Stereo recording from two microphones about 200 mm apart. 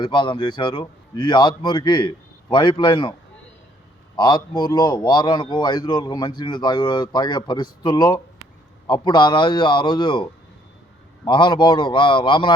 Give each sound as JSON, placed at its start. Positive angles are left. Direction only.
{"t": 0.0, "sound": "a man's voice", "side_deg": 25}
{"t": 4.2, "sound": "a man's voice", "side_deg": 20}
{"t": 11.3, "sound": "a man's voice", "side_deg": 25}